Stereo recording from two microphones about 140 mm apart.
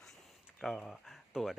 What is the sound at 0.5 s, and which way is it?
Speech, centre (ahead or behind).